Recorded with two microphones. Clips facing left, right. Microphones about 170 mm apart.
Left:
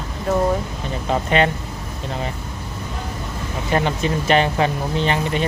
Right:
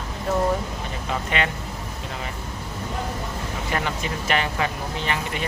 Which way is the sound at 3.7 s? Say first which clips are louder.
Left 8 dB; 30° left (ahead or behind).